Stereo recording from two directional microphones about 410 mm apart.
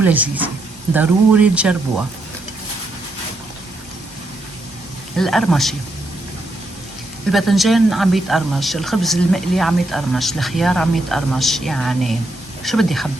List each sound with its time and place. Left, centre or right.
0.0 s speech: centre
5.1 s speech: centre
7.3 s speech: centre